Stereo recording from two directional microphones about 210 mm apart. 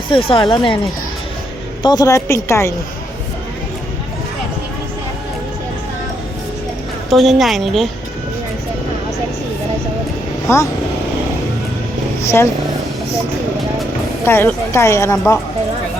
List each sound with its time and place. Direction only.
0.1 s speech: 25° left (ahead or behind)
1.8 s a woman's voice: 20° left (ahead or behind)
7.1 s a woman's voice: centre (ahead or behind)
10.5 s a woman's voice: 15° left (ahead or behind)
12.2 s speech: 15° left (ahead or behind)
14.3 s a woman's voice: 10° left (ahead or behind)